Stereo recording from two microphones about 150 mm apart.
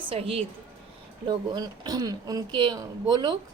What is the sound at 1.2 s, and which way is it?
Speech, 30° right (ahead or behind).